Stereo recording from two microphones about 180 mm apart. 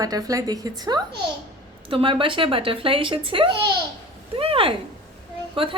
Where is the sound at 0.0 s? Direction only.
20° right (ahead or behind).